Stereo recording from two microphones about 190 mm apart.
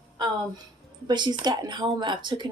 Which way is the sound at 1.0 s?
20° right (ahead or behind).